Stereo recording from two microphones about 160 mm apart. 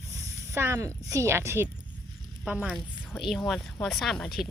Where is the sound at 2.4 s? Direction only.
5° right (ahead or behind).